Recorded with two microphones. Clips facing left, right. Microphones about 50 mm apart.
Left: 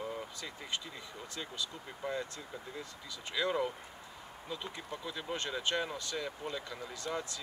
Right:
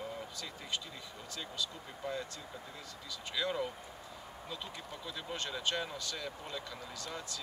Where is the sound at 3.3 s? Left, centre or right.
Centre.